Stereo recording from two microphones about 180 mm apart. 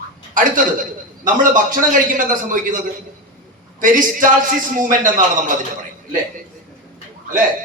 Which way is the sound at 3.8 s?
45° right (ahead or behind).